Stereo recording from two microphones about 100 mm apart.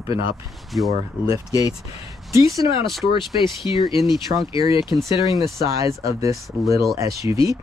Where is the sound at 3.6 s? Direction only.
65° left (ahead or behind).